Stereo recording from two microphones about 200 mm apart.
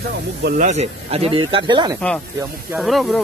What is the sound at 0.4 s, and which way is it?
Speech, 50° right (ahead or behind).